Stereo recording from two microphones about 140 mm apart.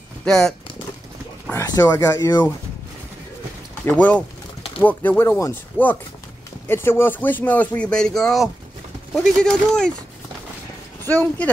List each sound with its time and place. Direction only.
0.2 s speech: 5° left (ahead or behind)
1.5 s speech: 25° left (ahead or behind)
3.8 s speech: 10° left (ahead or behind)
11.1 s speech: 10° left (ahead or behind)